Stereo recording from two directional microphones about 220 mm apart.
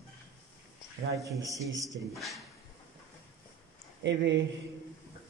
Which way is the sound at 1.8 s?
15° right (ahead or behind).